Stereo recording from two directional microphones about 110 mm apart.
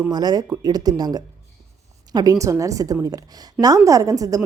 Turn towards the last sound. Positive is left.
turn(degrees=-30)  # may be behind; listen again after turning